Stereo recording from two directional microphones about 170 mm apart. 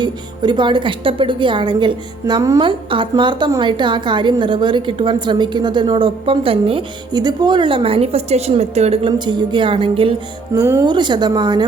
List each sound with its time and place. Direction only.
0.0 s a woman's voice: 25° right (ahead or behind)
10.5 s a woman's voice: 20° right (ahead or behind)